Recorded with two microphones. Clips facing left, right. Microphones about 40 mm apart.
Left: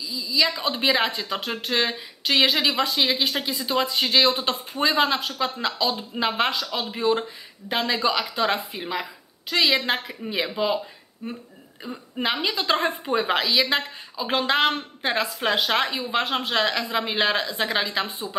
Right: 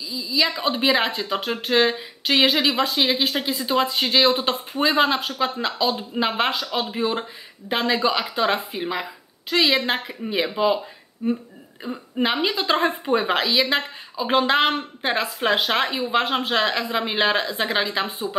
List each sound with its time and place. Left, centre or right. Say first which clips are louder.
0.1 s a woman's voice: right 1 dB; centre